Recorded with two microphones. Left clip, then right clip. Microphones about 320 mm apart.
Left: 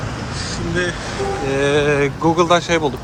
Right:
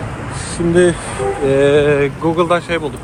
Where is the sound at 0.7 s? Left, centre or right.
Centre.